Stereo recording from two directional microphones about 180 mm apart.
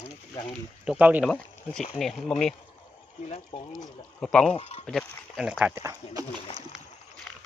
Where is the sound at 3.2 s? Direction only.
30° left (ahead or behind).